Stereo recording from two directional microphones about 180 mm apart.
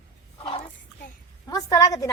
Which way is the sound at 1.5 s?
20° left (ahead or behind).